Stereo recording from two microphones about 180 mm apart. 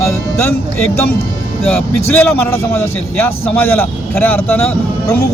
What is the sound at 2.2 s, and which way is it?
A man's voice, 10° left (ahead or behind).